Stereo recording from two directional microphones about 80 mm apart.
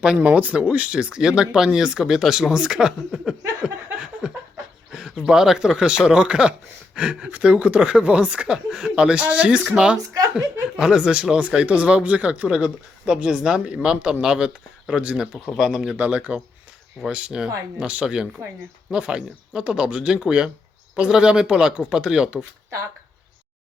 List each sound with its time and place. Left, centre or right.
0.0 s speech: centre
4.2 s a sound: centre
4.9 s speech: centre
16.0 s speech: centre